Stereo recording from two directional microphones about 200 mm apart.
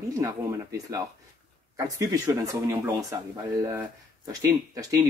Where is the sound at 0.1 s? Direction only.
15° right (ahead or behind).